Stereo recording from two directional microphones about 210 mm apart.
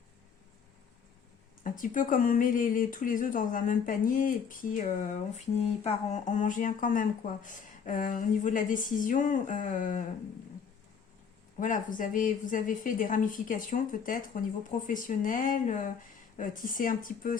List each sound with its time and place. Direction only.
1.6 s speech: 40° left (ahead or behind)
11.6 s speech: 40° left (ahead or behind)